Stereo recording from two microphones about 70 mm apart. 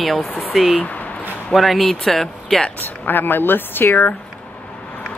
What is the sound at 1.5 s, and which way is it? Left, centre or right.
Speech, centre.